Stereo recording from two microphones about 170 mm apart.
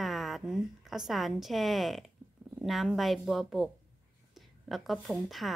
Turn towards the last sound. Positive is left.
turn(degrees=0)  # may be behind; listen again after turning